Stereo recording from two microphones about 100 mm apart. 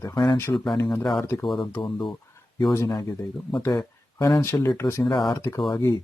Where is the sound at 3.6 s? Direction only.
30° left (ahead or behind).